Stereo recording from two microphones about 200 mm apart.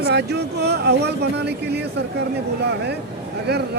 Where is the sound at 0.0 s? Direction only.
55° right (ahead or behind).